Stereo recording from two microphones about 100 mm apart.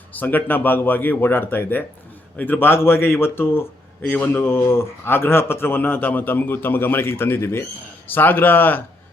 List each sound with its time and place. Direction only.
0.1 s a man's voice: 15° left (ahead or behind)